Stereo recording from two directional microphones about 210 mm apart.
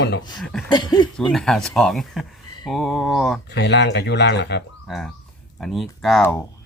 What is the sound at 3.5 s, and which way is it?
Speech, 55° left (ahead or behind).